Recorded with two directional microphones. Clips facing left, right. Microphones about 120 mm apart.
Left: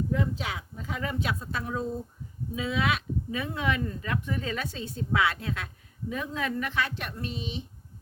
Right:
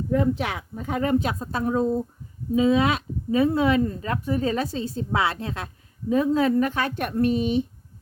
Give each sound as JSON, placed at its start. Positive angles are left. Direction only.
{"t": 0.1, "sound": "speech", "side_deg": -60}